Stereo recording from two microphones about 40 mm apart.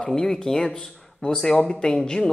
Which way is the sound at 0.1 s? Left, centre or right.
Centre.